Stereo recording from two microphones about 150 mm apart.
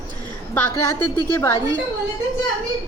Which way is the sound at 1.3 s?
20° left (ahead or behind).